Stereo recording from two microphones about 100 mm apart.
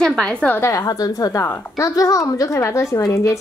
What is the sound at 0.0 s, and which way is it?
Speech, 5° left (ahead or behind).